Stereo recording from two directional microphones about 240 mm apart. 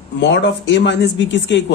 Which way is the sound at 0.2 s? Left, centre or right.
Left.